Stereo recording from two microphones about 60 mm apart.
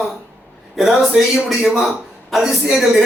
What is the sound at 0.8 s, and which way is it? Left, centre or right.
A man's voice, centre.